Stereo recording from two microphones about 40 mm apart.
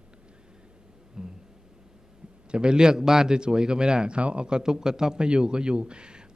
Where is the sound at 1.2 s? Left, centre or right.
Centre.